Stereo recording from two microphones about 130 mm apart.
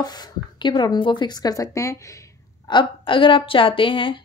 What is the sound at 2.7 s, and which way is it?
Speech, 40° left (ahead or behind).